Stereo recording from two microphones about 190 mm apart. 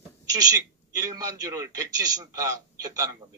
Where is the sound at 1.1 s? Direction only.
20° right (ahead or behind).